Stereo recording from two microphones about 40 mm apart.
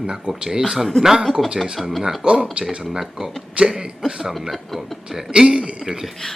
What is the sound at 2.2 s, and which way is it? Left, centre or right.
Throat clearing, right.